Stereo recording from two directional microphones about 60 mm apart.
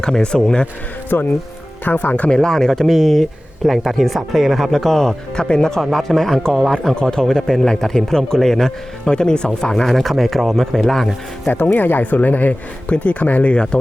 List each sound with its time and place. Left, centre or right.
0.0 s speech: centre
1.1 s speech: left
2.3 s speech: centre
11.4 s speech: left